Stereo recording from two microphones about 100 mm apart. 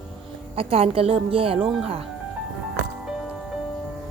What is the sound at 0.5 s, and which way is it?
Speech, 75° right (ahead or behind).